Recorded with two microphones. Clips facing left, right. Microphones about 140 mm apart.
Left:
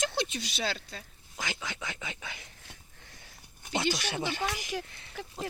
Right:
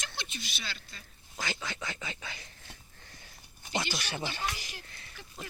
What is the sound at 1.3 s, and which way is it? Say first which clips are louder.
Speech: even; 15° left (ahead or behind).